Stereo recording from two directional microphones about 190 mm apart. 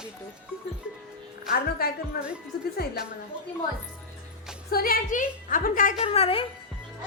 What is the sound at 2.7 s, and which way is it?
Speech, 55° left (ahead or behind).